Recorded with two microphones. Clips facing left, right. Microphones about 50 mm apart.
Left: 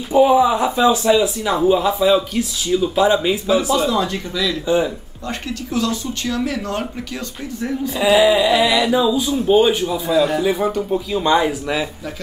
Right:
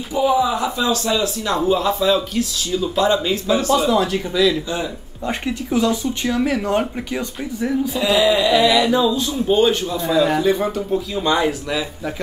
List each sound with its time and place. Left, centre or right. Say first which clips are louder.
0.1 s speech: left 5 dB; left; by 3.9 s centre
4.1 s speech: right 5 dB; centre
5.7 s speech: right 3 dB; centre
8.0 s speech: left 4 dB; centre